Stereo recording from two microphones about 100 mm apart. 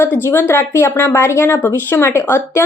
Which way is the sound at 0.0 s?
25° left (ahead or behind).